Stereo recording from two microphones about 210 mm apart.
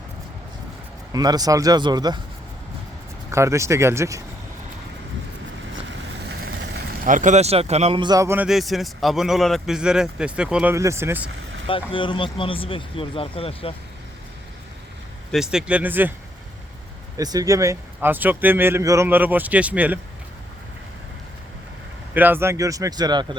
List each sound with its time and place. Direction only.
1.1 s a man's voice: 20° right (ahead or behind)
3.3 s a man's voice: 15° right (ahead or behind)
7.0 s a man's voice: 35° right (ahead or behind); by 11.3 s 10° right (ahead or behind)
11.6 s speech: 25° left (ahead or behind)
15.3 s speech: 5° right (ahead or behind)
17.2 s a man's voice: 15° right (ahead or behind)
22.1 s a man's voice: 10° right (ahead or behind)